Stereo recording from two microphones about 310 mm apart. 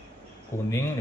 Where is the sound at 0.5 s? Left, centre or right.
Centre.